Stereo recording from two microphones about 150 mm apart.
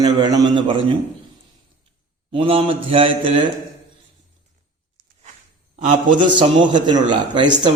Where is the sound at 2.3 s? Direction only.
35° right (ahead or behind).